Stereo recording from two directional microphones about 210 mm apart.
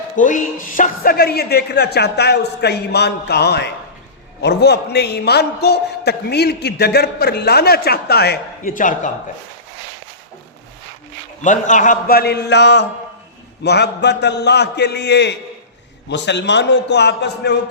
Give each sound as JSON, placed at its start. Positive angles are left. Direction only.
{"t": 0.2, "sound": "a man's voice", "side_deg": 40}
{"t": 11.4, "sound": "a man's voice", "side_deg": 35}